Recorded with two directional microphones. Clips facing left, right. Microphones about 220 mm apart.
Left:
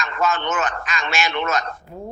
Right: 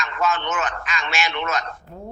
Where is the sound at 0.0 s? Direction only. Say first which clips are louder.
Left 1 dB; 45° left (ahead or behind).